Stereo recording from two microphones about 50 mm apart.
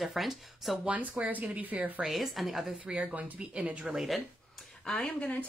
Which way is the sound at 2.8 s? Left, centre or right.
Right.